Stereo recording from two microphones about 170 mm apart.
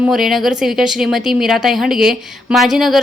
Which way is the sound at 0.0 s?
Centre (ahead or behind).